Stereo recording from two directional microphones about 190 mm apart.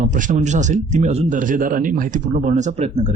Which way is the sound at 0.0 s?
40° right (ahead or behind).